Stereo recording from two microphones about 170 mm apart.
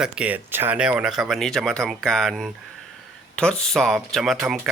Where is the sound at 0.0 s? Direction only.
5° right (ahead or behind).